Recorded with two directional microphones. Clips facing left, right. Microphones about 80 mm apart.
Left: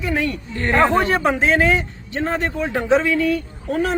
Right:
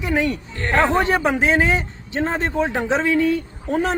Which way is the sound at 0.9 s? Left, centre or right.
Centre.